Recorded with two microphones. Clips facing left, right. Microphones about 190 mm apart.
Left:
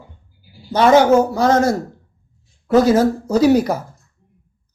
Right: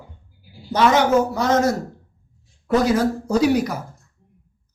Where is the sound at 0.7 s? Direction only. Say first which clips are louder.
Left 5 dB; 30° left (ahead or behind).